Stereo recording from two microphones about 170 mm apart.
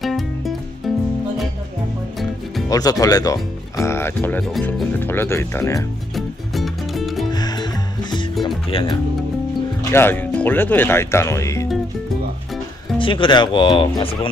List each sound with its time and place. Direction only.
0.0 s music: centre (ahead or behind)
2.7 s speech: 20° left (ahead or behind)
6.1 s music: centre (ahead or behind)
7.3 s music: 25° left (ahead or behind)
9.8 s speech: 15° left (ahead or behind)
13.0 s speech: 30° left (ahead or behind)